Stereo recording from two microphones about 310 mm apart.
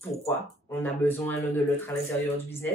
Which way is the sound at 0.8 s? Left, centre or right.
Centre.